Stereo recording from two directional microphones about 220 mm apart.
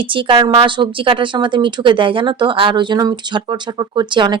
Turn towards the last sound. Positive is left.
turn(degrees=-20)  # may be behind; listen again after turning